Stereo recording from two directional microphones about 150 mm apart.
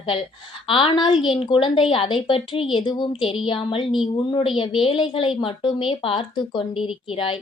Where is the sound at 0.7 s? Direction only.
35° left (ahead or behind).